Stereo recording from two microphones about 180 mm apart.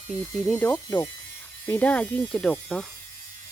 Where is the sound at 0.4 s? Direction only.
10° left (ahead or behind).